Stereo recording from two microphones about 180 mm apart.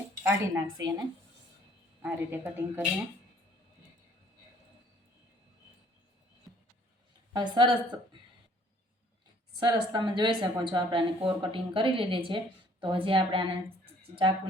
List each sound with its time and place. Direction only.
0.2 s a woman's voice: 15° right (ahead or behind)
2.0 s a woman's voice: 10° right (ahead or behind)
7.3 s speech: 25° right (ahead or behind)
9.6 s speech: 25° right (ahead or behind)
13.8 s a sound: 30° right (ahead or behind)